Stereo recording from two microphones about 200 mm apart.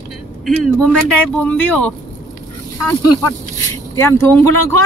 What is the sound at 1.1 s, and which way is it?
Speech, 5° left (ahead or behind).